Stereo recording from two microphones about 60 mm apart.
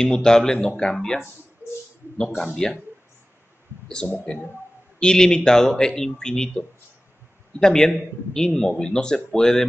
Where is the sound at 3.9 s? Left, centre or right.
Centre.